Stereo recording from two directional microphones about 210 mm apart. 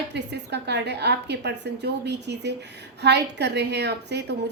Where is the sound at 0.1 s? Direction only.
55° right (ahead or behind).